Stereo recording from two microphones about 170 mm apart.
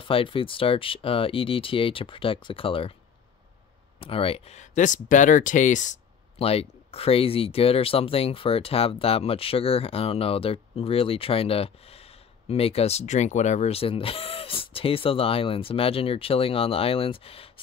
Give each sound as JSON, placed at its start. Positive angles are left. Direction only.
{"t": 0.1, "sound": "speech", "side_deg": 30}
{"t": 4.0, "sound": "speech", "side_deg": 35}